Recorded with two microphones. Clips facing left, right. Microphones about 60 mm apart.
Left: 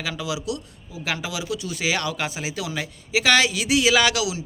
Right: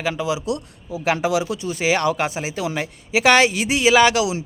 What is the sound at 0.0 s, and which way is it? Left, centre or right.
Speech, right.